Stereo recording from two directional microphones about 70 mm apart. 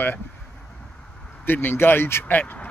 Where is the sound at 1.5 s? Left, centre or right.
Left.